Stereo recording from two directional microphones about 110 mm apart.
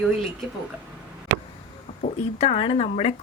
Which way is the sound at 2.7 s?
80° left.